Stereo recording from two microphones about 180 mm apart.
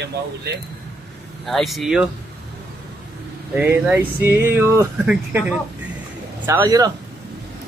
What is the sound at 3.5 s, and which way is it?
Speech, 10° right (ahead or behind).